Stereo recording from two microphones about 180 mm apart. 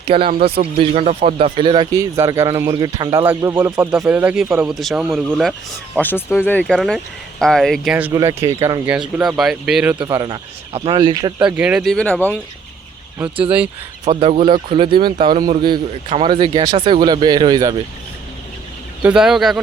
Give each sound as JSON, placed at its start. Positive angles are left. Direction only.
{"t": 0.0, "sound": "speech", "side_deg": -30}
{"t": 0.3, "sound": "speech", "side_deg": -60}
{"t": 0.6, "sound": "speech", "side_deg": -35}
{"t": 1.5, "sound": "speech", "side_deg": -25}
{"t": 6.0, "sound": "speech", "side_deg": 10}
{"t": 8.1, "sound": "speech", "side_deg": -20}
{"t": 9.1, "sound": "speech", "side_deg": -5}
{"t": 10.0, "sound": "speech", "side_deg": -25}
{"t": 11.4, "sound": "speech", "side_deg": -5}
{"t": 14.0, "sound": "speech", "side_deg": -35}
{"t": 19.0, "sound": "speech", "side_deg": -5}